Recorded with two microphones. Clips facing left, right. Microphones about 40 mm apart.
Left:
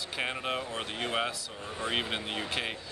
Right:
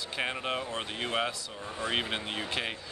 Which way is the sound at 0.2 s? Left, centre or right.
Centre.